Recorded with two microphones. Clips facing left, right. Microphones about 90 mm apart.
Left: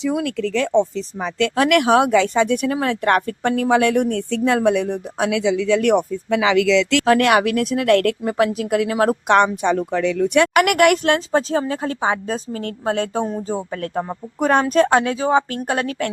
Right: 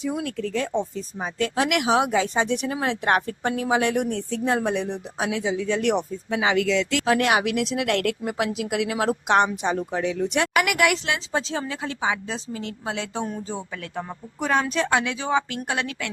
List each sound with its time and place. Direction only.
0.0 s speech: 85° left
1.5 s speech: 55° left (ahead or behind)
6.3 s speech: 90° left
7.0 s speech: 60° left (ahead or behind)
9.6 s a woman's voice: 65° left (ahead or behind); by 16.1 s 45° left (ahead or behind)